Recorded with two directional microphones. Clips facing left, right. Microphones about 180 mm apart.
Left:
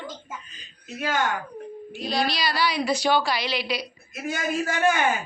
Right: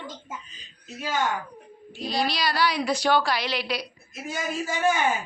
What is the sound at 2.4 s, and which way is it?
A woman's voice, 10° left (ahead or behind).